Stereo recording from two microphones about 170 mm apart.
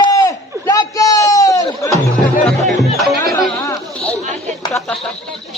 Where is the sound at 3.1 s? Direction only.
20° left (ahead or behind).